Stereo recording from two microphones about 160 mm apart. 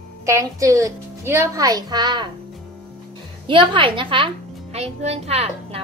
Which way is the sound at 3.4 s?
30° right (ahead or behind).